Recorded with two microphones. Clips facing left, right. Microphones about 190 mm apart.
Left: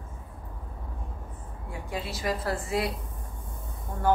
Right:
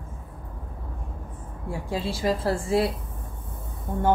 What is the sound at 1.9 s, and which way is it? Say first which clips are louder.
A woman's voice: right 5 dB; 30° right (ahead or behind).